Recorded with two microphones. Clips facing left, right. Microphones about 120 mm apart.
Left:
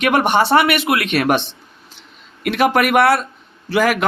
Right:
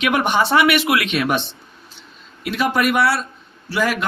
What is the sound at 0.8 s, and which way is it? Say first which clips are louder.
Speech: left 1 dB; 40° left (ahead or behind).